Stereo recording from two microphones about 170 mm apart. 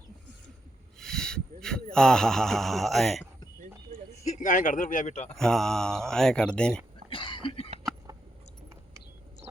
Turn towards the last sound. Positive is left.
turn(degrees=35)  # may be behind; listen again after turning